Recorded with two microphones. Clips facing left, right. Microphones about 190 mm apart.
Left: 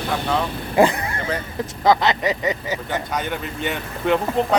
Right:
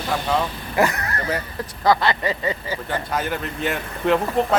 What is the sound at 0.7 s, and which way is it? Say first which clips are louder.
Speech: left 4 dB; 30° left (ahead or behind).